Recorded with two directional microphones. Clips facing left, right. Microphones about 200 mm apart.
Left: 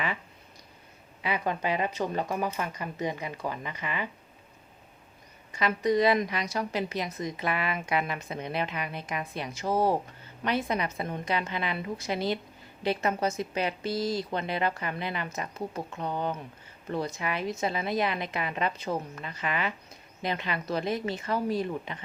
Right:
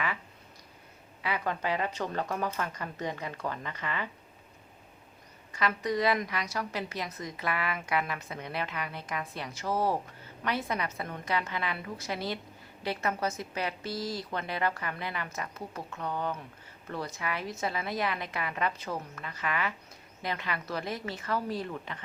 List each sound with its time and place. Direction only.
1.2 s speech: 20° left (ahead or behind)
5.5 s a woman's voice: 20° left (ahead or behind)